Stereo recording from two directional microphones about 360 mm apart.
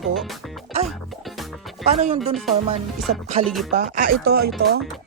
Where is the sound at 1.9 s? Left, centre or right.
Centre.